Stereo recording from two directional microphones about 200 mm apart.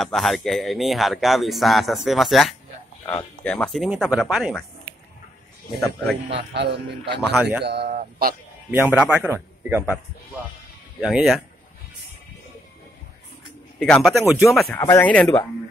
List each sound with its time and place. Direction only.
0.0 s speech: centre (ahead or behind)
5.8 s speech: centre (ahead or behind)
6.3 s speech: 60° right (ahead or behind)
7.2 s speech: centre (ahead or behind)
7.6 s speech: 55° right (ahead or behind)
8.6 s a man's voice: 5° right (ahead or behind)
11.0 s speech: centre (ahead or behind)
13.7 s speech: centre (ahead or behind)